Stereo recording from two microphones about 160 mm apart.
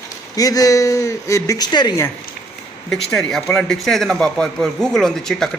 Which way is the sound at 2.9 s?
Centre (ahead or behind).